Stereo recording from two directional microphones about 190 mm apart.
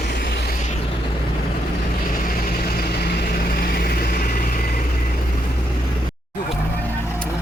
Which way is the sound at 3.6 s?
55° left (ahead or behind).